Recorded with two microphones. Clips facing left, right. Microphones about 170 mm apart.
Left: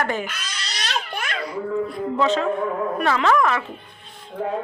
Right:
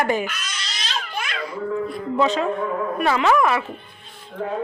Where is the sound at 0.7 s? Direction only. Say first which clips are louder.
Left 4 dB; 65° left (ahead or behind).